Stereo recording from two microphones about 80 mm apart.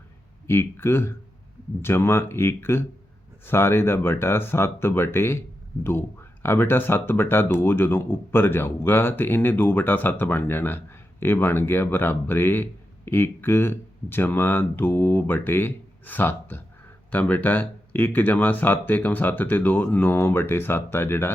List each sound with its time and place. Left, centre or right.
0.4 s speech: left